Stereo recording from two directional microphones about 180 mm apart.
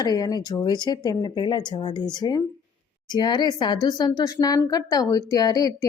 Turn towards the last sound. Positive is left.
turn(degrees=20)  # may be behind; listen again after turning